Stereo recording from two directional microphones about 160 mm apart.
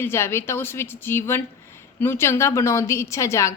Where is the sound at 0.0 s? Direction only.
15° left (ahead or behind).